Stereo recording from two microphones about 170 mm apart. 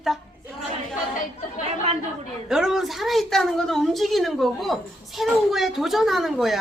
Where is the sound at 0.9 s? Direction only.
50° left (ahead or behind).